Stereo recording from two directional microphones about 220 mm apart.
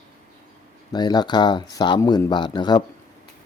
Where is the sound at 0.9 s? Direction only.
20° left (ahead or behind).